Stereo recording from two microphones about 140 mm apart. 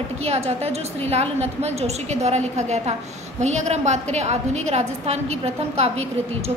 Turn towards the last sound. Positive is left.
turn(degrees=-50)  # may be behind; listen again after turning